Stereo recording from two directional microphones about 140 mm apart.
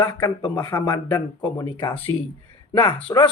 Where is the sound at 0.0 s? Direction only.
30° left (ahead or behind).